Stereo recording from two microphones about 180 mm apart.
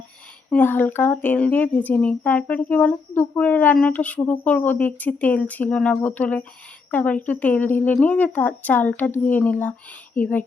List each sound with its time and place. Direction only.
0.5 s speech: 10° left (ahead or behind)